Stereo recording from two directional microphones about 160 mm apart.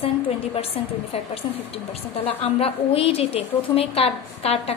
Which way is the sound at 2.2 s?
35° left (ahead or behind).